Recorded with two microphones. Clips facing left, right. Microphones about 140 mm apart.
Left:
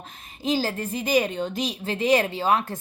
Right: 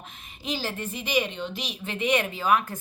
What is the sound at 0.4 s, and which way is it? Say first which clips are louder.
A woman's voice: left 6 dB; 40° left (ahead or behind).